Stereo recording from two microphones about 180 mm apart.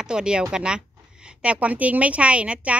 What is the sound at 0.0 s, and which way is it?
A woman's voice, 5° right (ahead or behind).